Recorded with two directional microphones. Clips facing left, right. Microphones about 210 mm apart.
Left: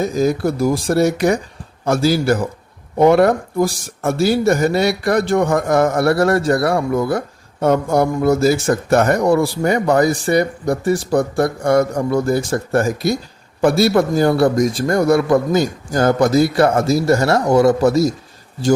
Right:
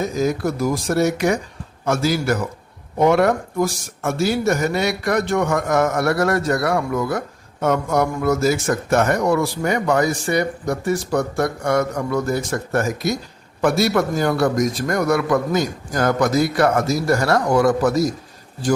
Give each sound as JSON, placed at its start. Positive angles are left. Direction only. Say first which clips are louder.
{"t": 0.0, "sound": "a man's voice", "louder": "left 4 dB", "side_deg": 30}